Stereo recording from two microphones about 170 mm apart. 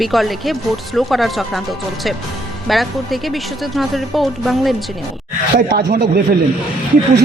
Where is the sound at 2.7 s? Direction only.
Centre (ahead or behind).